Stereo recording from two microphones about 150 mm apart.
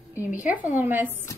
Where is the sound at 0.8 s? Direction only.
15° right (ahead or behind).